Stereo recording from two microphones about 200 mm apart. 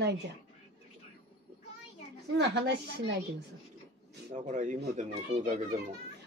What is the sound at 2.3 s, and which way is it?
Speech, 60° right (ahead or behind).